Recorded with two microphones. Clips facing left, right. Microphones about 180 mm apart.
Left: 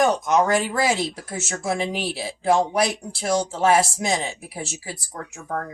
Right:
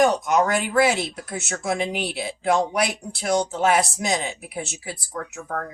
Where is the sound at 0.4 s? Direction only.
30° left (ahead or behind).